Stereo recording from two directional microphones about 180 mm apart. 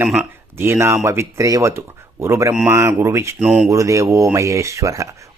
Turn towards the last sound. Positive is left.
turn(degrees=-15)  # may be behind; listen again after turning